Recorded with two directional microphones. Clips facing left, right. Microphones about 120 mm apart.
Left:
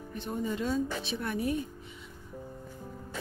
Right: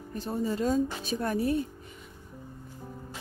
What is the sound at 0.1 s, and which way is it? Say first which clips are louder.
Speech: right 3 dB; 40° right (ahead or behind).